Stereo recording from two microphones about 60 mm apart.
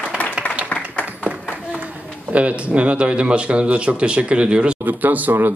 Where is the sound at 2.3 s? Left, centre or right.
Right.